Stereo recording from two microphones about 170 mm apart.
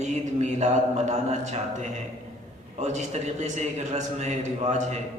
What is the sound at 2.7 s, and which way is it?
A man's voice, 40° right (ahead or behind).